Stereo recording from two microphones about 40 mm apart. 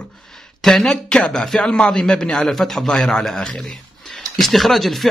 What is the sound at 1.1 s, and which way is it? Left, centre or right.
Speech, left.